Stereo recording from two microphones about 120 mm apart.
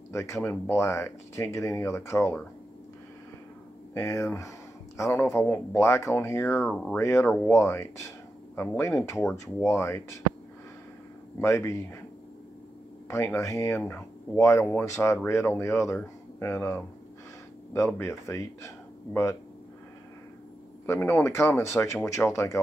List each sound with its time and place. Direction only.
0.1 s speech: 25° left (ahead or behind)
3.9 s speech: 20° left (ahead or behind)
6.7 s speech: 5° left (ahead or behind)
7.0 s speech: 25° left (ahead or behind)
11.4 s speech: 25° left (ahead or behind)
13.1 s speech: 25° left (ahead or behind)
20.8 s speech: 20° left (ahead or behind)